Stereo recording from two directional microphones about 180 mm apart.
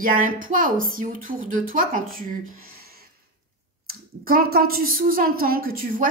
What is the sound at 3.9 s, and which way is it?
A woman's voice, 55° right (ahead or behind).